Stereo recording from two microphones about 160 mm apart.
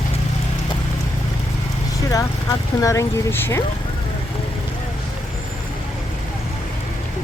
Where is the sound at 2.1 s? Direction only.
20° left (ahead or behind).